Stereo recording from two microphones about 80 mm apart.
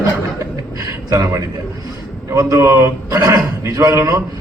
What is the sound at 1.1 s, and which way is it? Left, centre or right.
A man's voice, right.